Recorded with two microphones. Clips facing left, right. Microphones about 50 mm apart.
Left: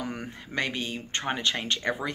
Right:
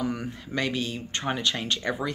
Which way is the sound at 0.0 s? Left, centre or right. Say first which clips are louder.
Right 5 dB; left.